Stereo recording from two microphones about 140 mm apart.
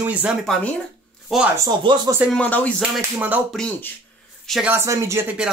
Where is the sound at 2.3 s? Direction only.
10° left (ahead or behind).